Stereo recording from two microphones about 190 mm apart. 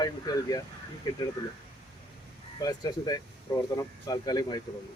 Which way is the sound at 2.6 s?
20° left (ahead or behind).